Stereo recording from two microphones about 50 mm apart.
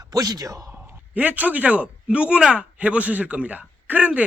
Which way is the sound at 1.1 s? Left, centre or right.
Right.